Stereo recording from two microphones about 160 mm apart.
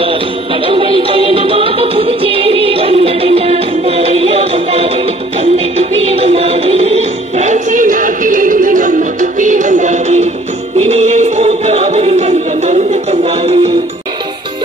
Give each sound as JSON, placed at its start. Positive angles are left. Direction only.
{"t": 0.7, "sound": "music", "side_deg": -35}